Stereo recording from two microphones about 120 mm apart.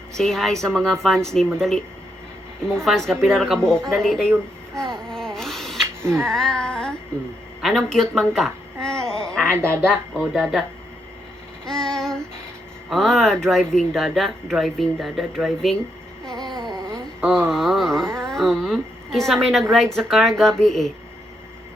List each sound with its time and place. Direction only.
0.2 s speech: 5° left (ahead or behind)
5.0 s a sound: 5° left (ahead or behind)
6.2 s speech: 5° left (ahead or behind)
9.4 s a woman's voice: 20° right (ahead or behind)
9.8 s speech: centre (ahead or behind)
11.6 s child singing: 5° left (ahead or behind)
12.9 s speech: centre (ahead or behind)
16.2 s a sound: 5° left (ahead or behind)
16.5 s a sound: 40° right (ahead or behind)
17.5 s a woman's voice: centre (ahead or behind)